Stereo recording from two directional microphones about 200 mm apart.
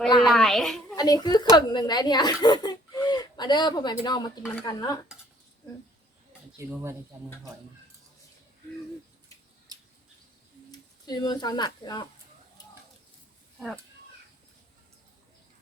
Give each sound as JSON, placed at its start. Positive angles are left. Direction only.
{"t": 0.3, "sound": "a child's voice", "side_deg": 0}
{"t": 0.9, "sound": "a woman's voice", "side_deg": 20}
{"t": 4.5, "sound": "dishes", "side_deg": 15}
{"t": 6.6, "sound": "speech", "side_deg": -15}
{"t": 10.7, "sound": "speech", "side_deg": 20}